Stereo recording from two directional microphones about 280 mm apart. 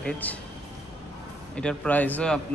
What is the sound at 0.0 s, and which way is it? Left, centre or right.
Speech, centre.